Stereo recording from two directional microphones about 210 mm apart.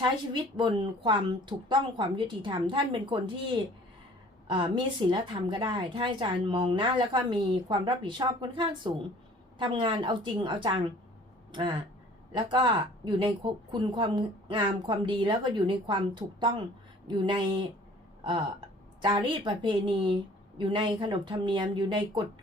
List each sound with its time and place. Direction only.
0.5 s a woman's voice: 20° right (ahead or behind)
19.0 s a woman's voice: 20° right (ahead or behind)